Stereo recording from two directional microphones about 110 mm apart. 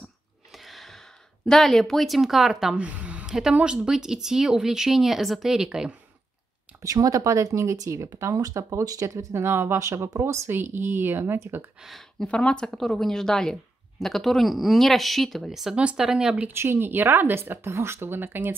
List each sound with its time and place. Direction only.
0.5 s speech: centre (ahead or behind)
6.8 s speech: 30° right (ahead or behind)
11.8 s speech: centre (ahead or behind)
16.5 s speech: 20° right (ahead or behind)